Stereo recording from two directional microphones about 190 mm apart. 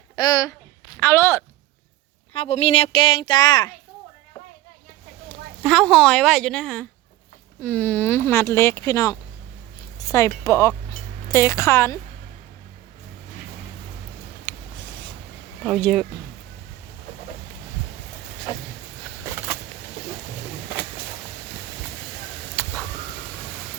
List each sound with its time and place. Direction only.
0.2 s speech: 20° left (ahead or behind)
2.3 s speech: 30° left (ahead or behind)
5.6 s a woman's voice: 5° left (ahead or behind)
14.5 s a sound: 10° left (ahead or behind)
15.6 s a woman's voice: 5° left (ahead or behind)
22.5 s a sound: 5° left (ahead or behind)